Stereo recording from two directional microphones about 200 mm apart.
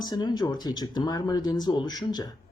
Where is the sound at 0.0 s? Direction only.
20° left (ahead or behind).